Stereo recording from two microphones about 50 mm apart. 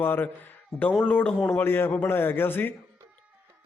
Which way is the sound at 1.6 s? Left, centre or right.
Left.